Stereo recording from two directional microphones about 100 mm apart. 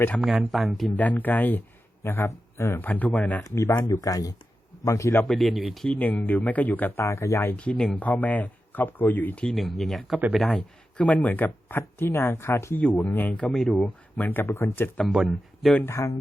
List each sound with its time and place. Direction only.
0.2 s speech: centre (ahead or behind)
0.9 s speech: 15° left (ahead or behind)
3.4 s speech: 30° left (ahead or behind)
5.2 s speech: centre (ahead or behind)
5.9 s speech: 15° left (ahead or behind)
7.5 s a man's voice: 10° left (ahead or behind)
11.0 s speech: 15° left (ahead or behind)
13.5 s speech: centre (ahead or behind); by 16.1 s 30° left (ahead or behind)